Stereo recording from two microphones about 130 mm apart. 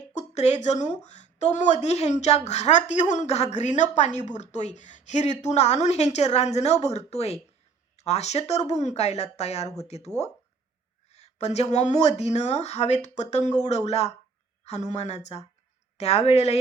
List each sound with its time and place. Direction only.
0.1 s a woman's voice: 60° left (ahead or behind)
3.6 s a woman's voice: 65° left (ahead or behind)
11.1 s a woman's voice: 55° left (ahead or behind)